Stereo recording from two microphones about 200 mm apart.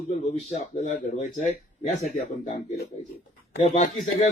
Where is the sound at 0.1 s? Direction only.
35° left (ahead or behind).